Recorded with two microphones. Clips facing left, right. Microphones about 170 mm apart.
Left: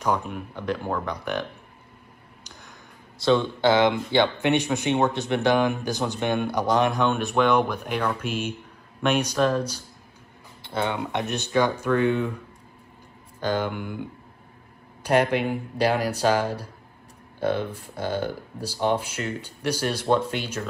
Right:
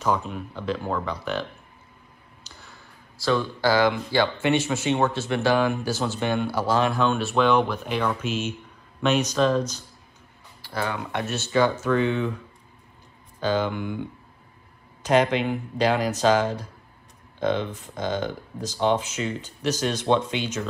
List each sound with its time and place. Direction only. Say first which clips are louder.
0.0 s speech: even; 10° left (ahead or behind)
2.4 s a sound: left 1 dB; 15° left (ahead or behind)
4.7 s speech: even; 15° left (ahead or behind)
11.0 s speech: left 1 dB; 20° left (ahead or behind)
13.4 s speech: right 2 dB; 10° left (ahead or behind)
15.0 s speech: right 1 dB; 10° left (ahead or behind)